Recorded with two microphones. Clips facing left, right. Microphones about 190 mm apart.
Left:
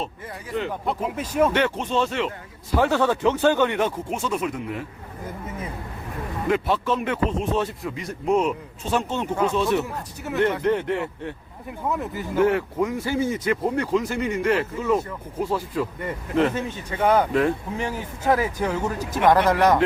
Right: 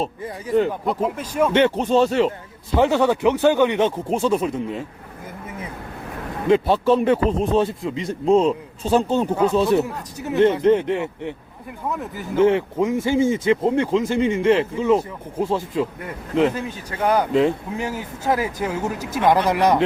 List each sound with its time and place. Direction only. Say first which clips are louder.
0.9 s speech: right 4 dB; 5° left (ahead or behind)
1.5 s a man's voice: right 6 dB; 25° right (ahead or behind)
1.8 s a man's voice: right 7 dB; 40° right (ahead or behind)
2.7 s a man's voice: right 3 dB; 15° right (ahead or behind)
6.5 s a man's voice: right 7 dB; 30° right (ahead or behind)
10.2 s a man's voice: right 6 dB; 20° right (ahead or behind)
12.4 s a man's voice: right 3 dB; 20° right (ahead or behind)
16.6 s speech: even; centre (ahead or behind)